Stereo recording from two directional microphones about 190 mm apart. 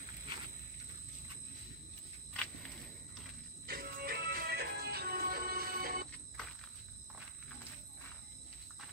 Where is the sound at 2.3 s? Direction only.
5° left (ahead or behind).